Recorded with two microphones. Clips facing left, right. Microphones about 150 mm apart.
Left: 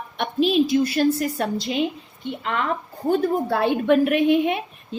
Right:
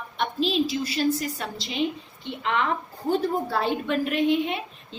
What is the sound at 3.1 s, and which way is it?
A woman's voice, 55° left (ahead or behind).